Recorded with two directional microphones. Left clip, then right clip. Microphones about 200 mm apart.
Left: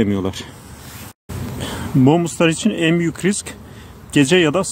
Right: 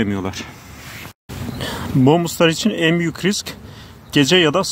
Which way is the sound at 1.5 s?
Centre (ahead or behind).